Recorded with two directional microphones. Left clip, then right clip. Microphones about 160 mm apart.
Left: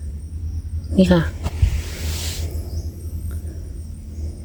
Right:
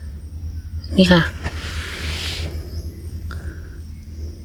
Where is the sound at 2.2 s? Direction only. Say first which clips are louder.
Right 3 dB; 50° left (ahead or behind).